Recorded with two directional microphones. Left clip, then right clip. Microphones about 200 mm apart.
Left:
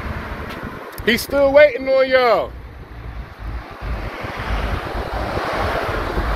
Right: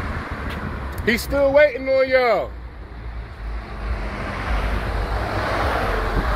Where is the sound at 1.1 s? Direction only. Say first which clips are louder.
Left 3 dB; 15° left (ahead or behind).